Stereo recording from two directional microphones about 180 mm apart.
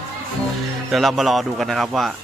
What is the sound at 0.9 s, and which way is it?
A man's voice, centre (ahead or behind).